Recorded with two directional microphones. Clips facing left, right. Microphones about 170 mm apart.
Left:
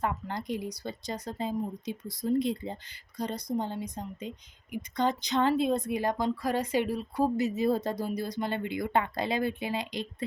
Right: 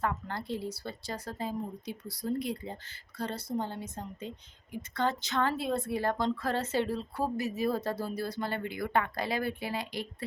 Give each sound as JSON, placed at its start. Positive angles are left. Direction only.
{"t": 0.0, "sound": "a woman's voice", "side_deg": 15}